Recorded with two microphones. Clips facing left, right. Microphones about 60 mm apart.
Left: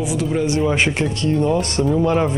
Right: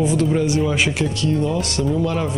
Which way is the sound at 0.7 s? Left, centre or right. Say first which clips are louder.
Left 2 dB; left.